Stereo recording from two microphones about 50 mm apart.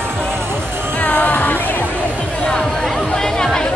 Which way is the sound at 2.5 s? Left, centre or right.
Centre.